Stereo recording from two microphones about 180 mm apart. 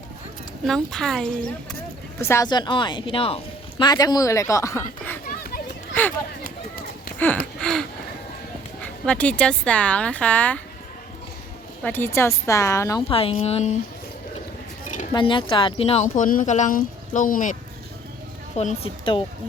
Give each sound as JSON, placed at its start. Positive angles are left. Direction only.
{"t": 0.7, "sound": "speech", "side_deg": 5}
{"t": 2.2, "sound": "speech", "side_deg": 15}
{"t": 5.2, "sound": "a sound", "side_deg": 50}
{"t": 5.9, "sound": "speech", "side_deg": 10}
{"t": 7.6, "sound": "a sound", "side_deg": 5}
{"t": 8.8, "sound": "speech", "side_deg": 5}
{"t": 11.8, "sound": "speech", "side_deg": 10}
{"t": 13.1, "sound": "speech", "side_deg": 30}
{"t": 15.1, "sound": "speech", "side_deg": 25}
{"t": 18.5, "sound": "a woman's voice", "side_deg": 35}